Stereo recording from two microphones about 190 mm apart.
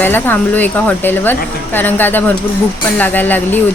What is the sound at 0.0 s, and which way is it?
A woman's voice, 10° left (ahead or behind).